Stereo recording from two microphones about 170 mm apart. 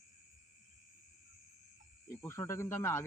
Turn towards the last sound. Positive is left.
turn(degrees=15)  # may be behind; listen again after turning